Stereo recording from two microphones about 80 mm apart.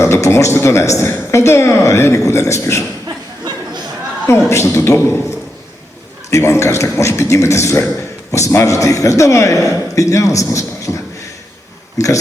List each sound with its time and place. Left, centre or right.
0.0 s speech: left
4.3 s speech: left
6.3 s a man's voice: left